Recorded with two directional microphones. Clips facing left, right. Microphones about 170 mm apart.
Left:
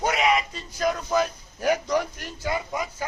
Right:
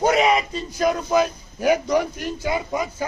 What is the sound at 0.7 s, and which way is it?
A man's voice, 15° right (ahead or behind).